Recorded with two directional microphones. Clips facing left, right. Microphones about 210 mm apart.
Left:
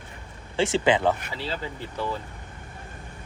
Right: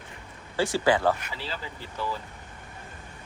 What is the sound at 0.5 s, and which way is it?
Speech, 25° left (ahead or behind).